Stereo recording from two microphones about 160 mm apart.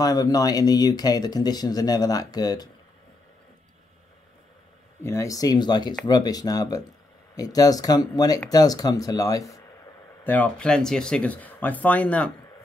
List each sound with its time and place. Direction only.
0.0 s speech: 25° left (ahead or behind)
5.0 s speech: 20° left (ahead or behind)
10.2 s speech: 10° left (ahead or behind)